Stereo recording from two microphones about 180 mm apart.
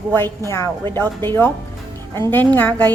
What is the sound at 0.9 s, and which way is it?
A woman's voice, 10° left (ahead or behind).